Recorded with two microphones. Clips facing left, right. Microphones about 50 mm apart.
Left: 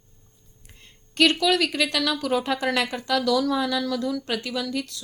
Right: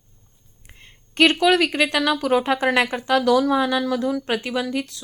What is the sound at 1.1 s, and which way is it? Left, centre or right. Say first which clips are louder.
Speech: right 4 dB; right.